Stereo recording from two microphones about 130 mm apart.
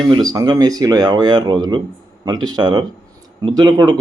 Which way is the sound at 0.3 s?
30° right (ahead or behind).